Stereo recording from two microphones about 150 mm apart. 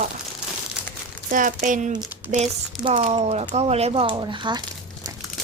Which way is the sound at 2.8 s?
40° right (ahead or behind).